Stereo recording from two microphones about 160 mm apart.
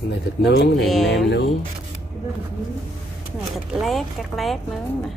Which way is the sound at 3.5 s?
Centre (ahead or behind).